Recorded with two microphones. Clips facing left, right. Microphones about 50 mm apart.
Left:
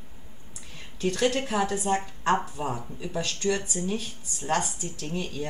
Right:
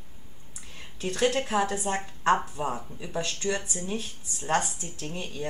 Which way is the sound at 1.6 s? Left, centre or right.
Right.